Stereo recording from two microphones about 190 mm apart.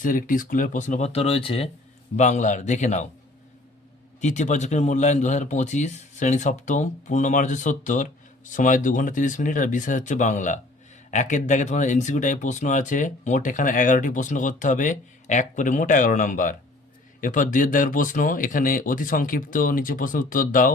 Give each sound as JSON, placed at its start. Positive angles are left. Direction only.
{"t": 0.0, "sound": "speech", "side_deg": 45}
{"t": 4.2, "sound": "speech", "side_deg": 40}